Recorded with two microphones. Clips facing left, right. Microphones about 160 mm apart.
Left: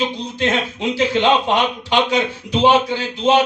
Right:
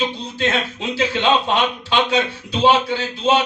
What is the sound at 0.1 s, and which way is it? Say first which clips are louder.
A man's voice: left 2 dB; 15° left (ahead or behind).